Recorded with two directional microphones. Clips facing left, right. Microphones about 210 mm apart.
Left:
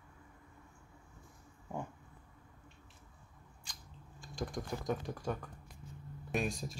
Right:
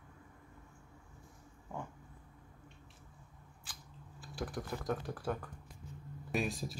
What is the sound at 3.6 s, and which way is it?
Typing, 5° right (ahead or behind).